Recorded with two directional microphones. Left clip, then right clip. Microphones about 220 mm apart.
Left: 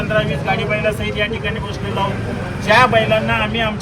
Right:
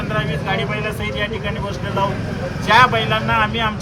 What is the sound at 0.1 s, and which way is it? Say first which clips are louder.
Speech: left 4 dB; 10° right (ahead or behind).